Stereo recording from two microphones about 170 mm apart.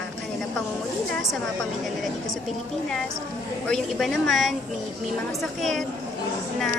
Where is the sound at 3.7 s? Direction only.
Centre (ahead or behind).